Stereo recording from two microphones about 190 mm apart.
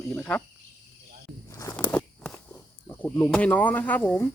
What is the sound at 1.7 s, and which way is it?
Walk, 10° left (ahead or behind).